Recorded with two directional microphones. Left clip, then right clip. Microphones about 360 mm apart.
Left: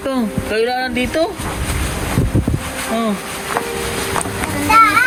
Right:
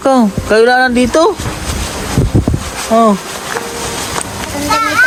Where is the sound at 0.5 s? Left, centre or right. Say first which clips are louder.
Right 10 dB; centre.